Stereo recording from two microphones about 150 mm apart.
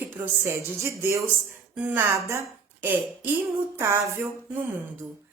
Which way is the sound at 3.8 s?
20° right (ahead or behind).